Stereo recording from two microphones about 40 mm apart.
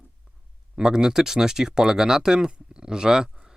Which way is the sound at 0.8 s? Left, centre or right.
Centre.